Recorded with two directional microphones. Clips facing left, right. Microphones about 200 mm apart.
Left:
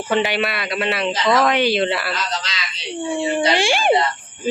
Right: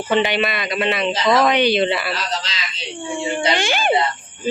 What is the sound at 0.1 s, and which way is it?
Speech, 5° left (ahead or behind).